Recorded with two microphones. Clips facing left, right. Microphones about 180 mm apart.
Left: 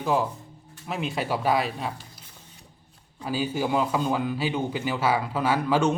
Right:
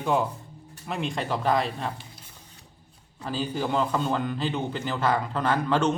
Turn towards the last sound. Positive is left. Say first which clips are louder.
# left 1 dB
turn(degrees=10)  # may be behind; listen again after turning